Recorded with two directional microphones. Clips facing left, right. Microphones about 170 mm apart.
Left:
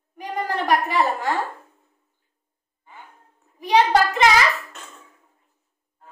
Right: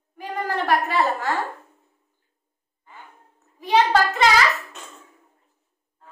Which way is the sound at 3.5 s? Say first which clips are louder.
Left 1 dB; 15° left (ahead or behind).